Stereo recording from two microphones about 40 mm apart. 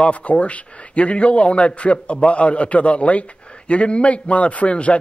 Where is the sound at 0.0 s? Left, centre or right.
Left.